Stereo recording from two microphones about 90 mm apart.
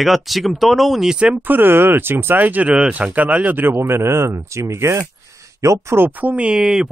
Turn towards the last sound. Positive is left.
turn(degrees=-10)  # may be behind; listen again after turning